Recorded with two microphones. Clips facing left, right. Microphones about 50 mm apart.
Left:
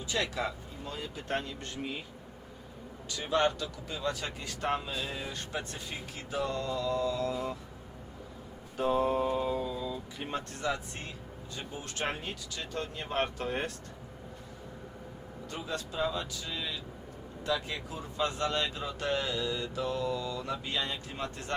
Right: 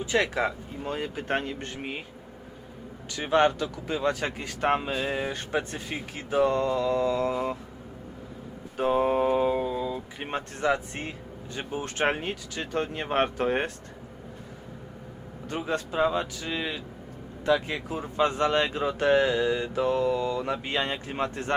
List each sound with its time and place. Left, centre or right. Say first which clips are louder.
0.0 s speech: right 7 dB; right
3.1 s speech: right 6 dB; right
8.8 s speech: right 5 dB; right
15.4 s speech: right 8 dB; right